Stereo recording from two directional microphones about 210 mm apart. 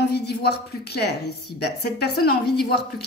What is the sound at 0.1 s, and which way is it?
A woman's voice, 50° left (ahead or behind).